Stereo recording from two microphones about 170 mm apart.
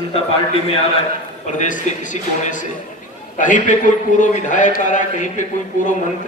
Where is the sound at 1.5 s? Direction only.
50° left (ahead or behind).